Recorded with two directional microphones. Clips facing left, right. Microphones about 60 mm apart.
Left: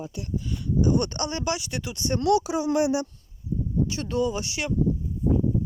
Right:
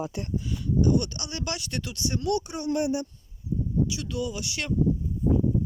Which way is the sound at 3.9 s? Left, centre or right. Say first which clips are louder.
Left 5 dB; left.